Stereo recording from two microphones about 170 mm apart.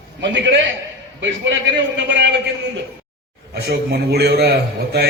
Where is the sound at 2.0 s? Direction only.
90° right.